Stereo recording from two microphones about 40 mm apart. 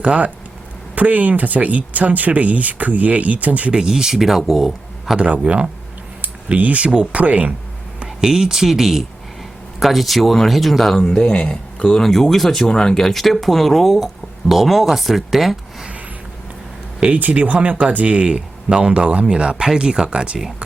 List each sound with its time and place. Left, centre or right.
0.0 s speech: right
0.9 s speech: right
3.7 s speech: centre
4.1 s speech: centre
5.2 s speech: right
6.2 s speech: right
8.0 s speech: centre
10.9 s speech: centre
12.6 s speech: centre
17.2 s speech: right